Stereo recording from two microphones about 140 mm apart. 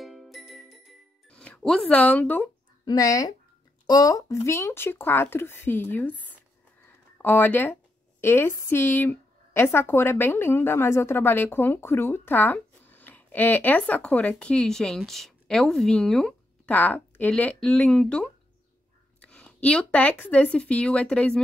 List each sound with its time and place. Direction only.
0.0 s music: centre (ahead or behind)
2.8 s speech: 30° left (ahead or behind)
7.2 s speech: 15° left (ahead or behind)